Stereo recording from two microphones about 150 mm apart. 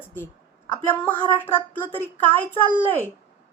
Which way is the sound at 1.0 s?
10° left (ahead or behind).